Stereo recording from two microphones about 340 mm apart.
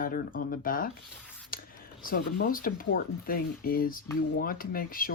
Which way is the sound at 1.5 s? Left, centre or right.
Left.